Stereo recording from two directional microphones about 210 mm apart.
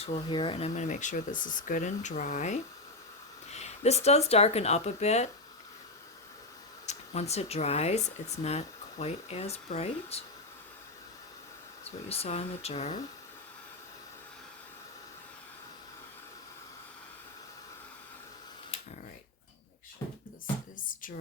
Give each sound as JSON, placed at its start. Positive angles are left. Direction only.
{"t": 0.0, "sound": "speech", "side_deg": 25}
{"t": 6.8, "sound": "speech", "side_deg": 30}
{"t": 12.0, "sound": "speech", "side_deg": 30}
{"t": 20.7, "sound": "music", "side_deg": 40}